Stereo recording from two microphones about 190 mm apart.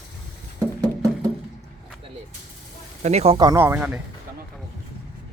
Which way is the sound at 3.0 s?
35° right (ahead or behind).